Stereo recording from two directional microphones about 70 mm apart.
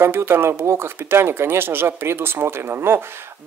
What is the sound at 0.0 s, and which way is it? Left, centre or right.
Speech, right.